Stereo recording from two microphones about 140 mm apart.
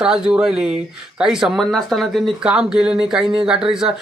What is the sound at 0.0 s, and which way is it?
Speech, 5° right (ahead or behind).